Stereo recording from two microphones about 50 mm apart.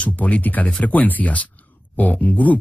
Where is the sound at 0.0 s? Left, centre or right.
Left.